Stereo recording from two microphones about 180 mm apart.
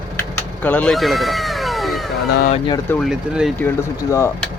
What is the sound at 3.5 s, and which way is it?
Speech, 15° left (ahead or behind).